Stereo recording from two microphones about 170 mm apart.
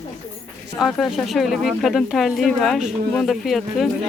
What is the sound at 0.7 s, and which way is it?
Speech, centre (ahead or behind).